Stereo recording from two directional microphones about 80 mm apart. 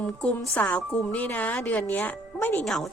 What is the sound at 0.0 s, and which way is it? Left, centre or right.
A woman's voice, centre.